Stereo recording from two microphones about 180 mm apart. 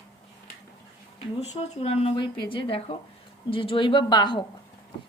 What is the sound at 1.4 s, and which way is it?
Speech, 35° left (ahead or behind).